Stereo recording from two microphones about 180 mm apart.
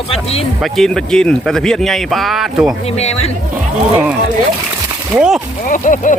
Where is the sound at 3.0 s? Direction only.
35° left (ahead or behind).